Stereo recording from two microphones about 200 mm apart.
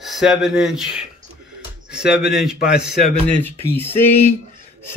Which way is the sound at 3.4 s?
10° left (ahead or behind).